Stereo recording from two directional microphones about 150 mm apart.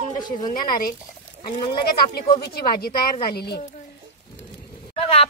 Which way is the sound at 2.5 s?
90° left.